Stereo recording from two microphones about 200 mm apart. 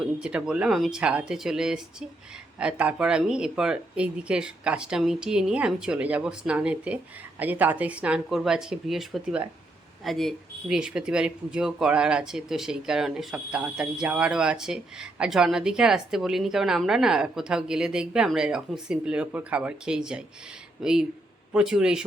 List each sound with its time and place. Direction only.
0.2 s speech: 5° right (ahead or behind)